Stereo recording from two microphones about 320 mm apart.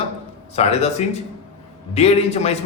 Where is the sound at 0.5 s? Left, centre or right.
Centre.